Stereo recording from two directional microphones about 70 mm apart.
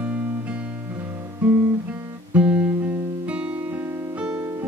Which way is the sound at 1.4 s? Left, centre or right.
Right.